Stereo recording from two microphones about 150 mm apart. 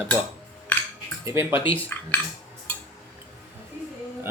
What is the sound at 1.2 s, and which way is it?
Speech, 15° right (ahead or behind).